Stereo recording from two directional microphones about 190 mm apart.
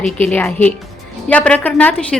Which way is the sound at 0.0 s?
5° left (ahead or behind).